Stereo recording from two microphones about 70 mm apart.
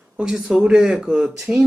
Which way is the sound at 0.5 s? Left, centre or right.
Centre.